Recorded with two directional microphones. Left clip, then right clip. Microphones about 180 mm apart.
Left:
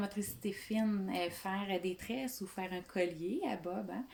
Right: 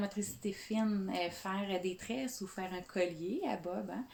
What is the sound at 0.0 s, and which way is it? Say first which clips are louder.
Speech: right 1 dB; 15° left (ahead or behind).